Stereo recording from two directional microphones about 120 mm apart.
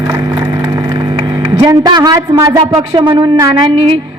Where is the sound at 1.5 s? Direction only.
35° right (ahead or behind).